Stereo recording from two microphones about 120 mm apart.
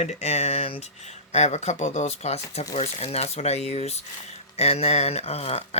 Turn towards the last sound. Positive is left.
turn(degrees=60)  # may be behind; listen again after turning